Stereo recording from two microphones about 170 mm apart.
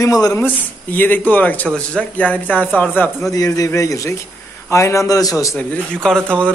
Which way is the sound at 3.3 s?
20° left (ahead or behind).